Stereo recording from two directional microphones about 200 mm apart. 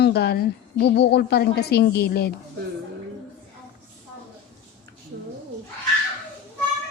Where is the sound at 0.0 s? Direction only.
55° left (ahead or behind).